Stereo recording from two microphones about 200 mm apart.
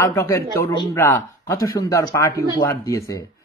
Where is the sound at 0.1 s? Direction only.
15° left (ahead or behind).